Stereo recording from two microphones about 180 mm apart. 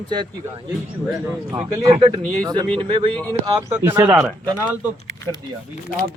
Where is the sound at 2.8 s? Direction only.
25° right (ahead or behind).